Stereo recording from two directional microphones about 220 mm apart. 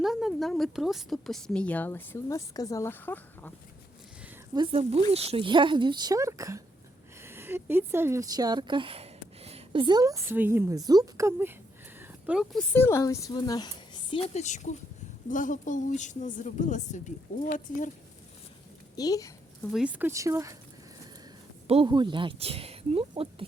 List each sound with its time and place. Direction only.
0.0 s speech: centre (ahead or behind)
4.5 s speech: 25° right (ahead or behind)
11.9 s a sound: 5° right (ahead or behind)
12.7 s a woman's voice: 10° left (ahead or behind)
14.1 s a woman's voice: 30° left (ahead or behind)
18.9 s a woman's voice: 15° left (ahead or behind)
19.7 s speech: 5° right (ahead or behind)
21.7 s speech: 25° right (ahead or behind)